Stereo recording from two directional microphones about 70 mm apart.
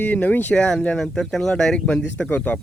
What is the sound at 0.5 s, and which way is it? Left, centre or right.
Speech, centre.